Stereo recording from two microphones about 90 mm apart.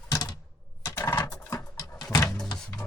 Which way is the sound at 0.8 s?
35° left (ahead or behind).